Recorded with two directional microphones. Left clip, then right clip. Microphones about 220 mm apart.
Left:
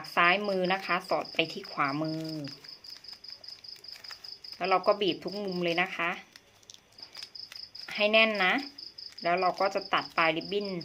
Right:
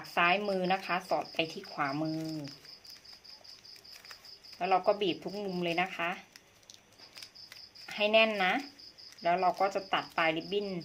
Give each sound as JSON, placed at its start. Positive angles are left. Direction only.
{"t": 0.1, "sound": "speech", "side_deg": 15}
{"t": 4.1, "sound": "cricket", "side_deg": 20}
{"t": 7.9, "sound": "speech", "side_deg": 20}